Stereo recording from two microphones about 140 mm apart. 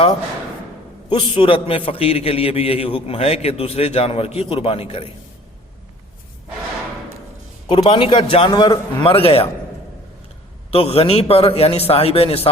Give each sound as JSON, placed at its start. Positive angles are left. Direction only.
{"t": 1.1, "sound": "a man's voice", "side_deg": 40}
{"t": 7.7, "sound": "a man's voice", "side_deg": 40}
{"t": 10.7, "sound": "a man's voice", "side_deg": 45}